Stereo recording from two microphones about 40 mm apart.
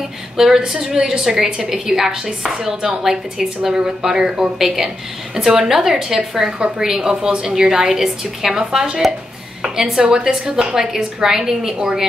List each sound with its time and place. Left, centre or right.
0.4 s a woman's voice: centre
9.9 s a woman's voice: centre